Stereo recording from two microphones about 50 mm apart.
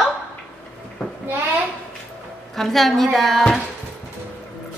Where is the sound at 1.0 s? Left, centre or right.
Centre.